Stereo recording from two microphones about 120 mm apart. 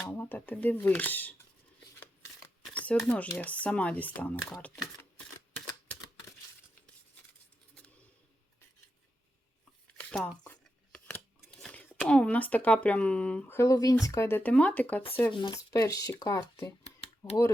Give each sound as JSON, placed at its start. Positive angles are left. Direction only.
{"t": 0.0, "sound": "speech", "side_deg": 15}
{"t": 2.7, "sound": "a sound", "side_deg": 10}
{"t": 3.0, "sound": "speech", "side_deg": 5}
{"t": 9.8, "sound": "shuffling cards", "side_deg": 10}
{"t": 11.3, "sound": "a sound", "side_deg": 5}
{"t": 12.0, "sound": "speech", "side_deg": 10}
{"t": 13.6, "sound": "speech", "side_deg": 25}
{"t": 15.3, "sound": "speech", "side_deg": 40}
{"t": 15.5, "sound": "speech", "side_deg": 30}